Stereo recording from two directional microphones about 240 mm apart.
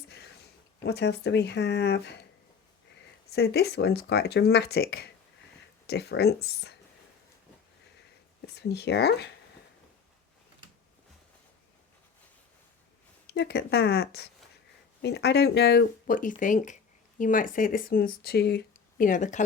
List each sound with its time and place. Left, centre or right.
0.8 s speech: left
3.2 s speech: left
8.4 s speech: left
13.3 s speech: left